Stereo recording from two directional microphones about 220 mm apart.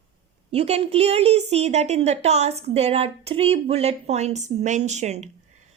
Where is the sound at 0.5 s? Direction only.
30° right (ahead or behind).